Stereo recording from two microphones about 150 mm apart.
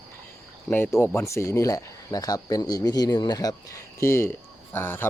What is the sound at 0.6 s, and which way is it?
Speech, 15° left (ahead or behind).